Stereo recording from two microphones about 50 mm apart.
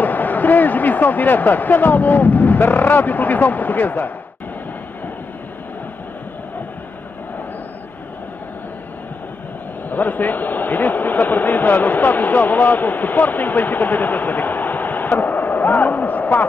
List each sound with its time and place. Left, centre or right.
0.0 s speech: left
9.8 s speech: left